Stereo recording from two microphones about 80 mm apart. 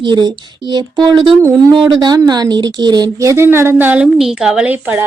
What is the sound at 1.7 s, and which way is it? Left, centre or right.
Speech, right.